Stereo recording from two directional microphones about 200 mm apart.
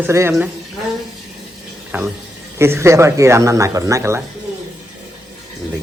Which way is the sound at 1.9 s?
10° right (ahead or behind).